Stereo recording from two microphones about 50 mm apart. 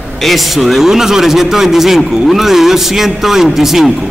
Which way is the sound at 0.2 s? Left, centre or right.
Centre.